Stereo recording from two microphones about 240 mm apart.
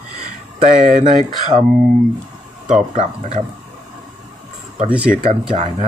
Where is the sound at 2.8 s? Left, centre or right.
Right.